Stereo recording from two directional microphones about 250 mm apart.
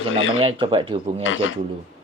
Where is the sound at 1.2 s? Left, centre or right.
Left.